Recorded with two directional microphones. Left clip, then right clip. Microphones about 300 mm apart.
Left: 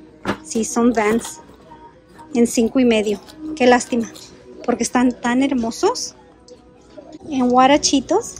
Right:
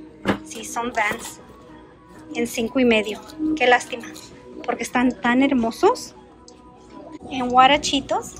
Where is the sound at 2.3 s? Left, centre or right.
Centre.